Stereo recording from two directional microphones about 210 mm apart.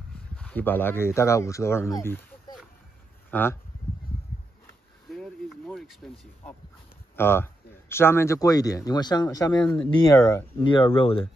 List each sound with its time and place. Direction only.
0.4 s speech: 10° left (ahead or behind)
5.1 s a sound: centre (ahead or behind)
7.2 s speech: 10° left (ahead or behind); by 11.2 s 25° left (ahead or behind)